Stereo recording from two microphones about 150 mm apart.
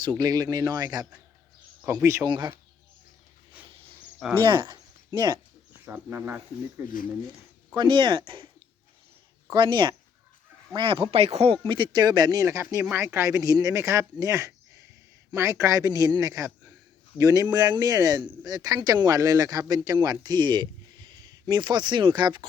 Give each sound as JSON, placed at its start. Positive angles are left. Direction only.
{"t": 0.0, "sound": "speech", "side_deg": -30}
{"t": 1.8, "sound": "speech", "side_deg": -10}
{"t": 2.0, "sound": "speech", "side_deg": -20}
{"t": 3.6, "sound": "dog", "side_deg": -10}
{"t": 4.4, "sound": "speech", "side_deg": -30}
{"t": 5.8, "sound": "speech", "side_deg": -15}
{"t": 7.8, "sound": "speech", "side_deg": -30}
{"t": 9.5, "sound": "speech", "side_deg": -30}
{"t": 11.6, "sound": "speech", "side_deg": -30}
{"t": 12.8, "sound": "speech", "side_deg": -15}